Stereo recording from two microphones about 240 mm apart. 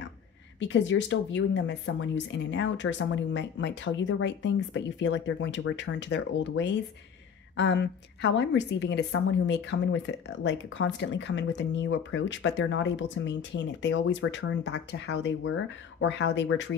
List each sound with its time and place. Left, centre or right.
0.6 s a woman's voice: left